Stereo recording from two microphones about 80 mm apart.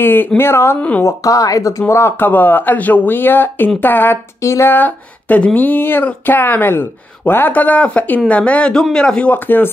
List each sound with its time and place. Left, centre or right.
0.0 s speech: left
0.7 s speech: centre
1.0 s speech: left
1.8 s speech: left
4.4 s speech: left
4.7 s speech: left
9.3 s speech: left